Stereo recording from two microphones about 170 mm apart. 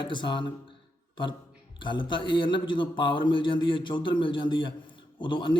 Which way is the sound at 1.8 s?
30° left (ahead or behind).